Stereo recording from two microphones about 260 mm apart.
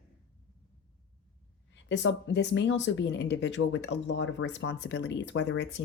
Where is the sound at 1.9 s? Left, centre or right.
Left.